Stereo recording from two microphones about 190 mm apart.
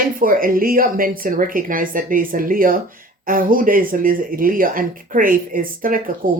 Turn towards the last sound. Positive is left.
turn(degrees=-45)  # may be behind; listen again after turning